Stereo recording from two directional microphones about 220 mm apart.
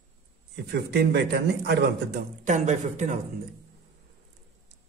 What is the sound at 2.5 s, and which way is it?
Speech, 35° right (ahead or behind).